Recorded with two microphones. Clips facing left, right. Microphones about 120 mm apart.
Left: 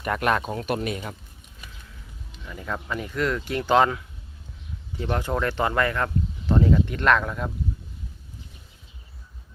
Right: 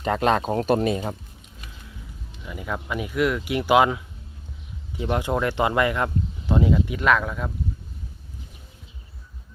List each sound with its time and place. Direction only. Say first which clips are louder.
0.0 s speech: right 3 dB; 25° right (ahead or behind)
0.5 s speech: right 6 dB; 40° right (ahead or behind)
2.4 s speech: right 2 dB; 10° right (ahead or behind)